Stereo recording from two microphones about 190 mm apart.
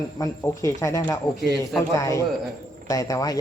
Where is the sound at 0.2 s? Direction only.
15° left (ahead or behind).